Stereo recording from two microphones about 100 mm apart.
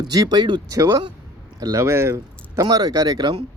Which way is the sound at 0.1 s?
40° right (ahead or behind).